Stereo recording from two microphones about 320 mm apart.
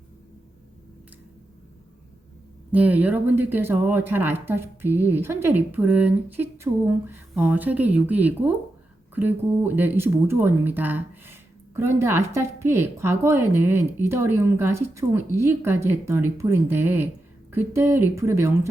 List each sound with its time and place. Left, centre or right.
2.7 s speech: centre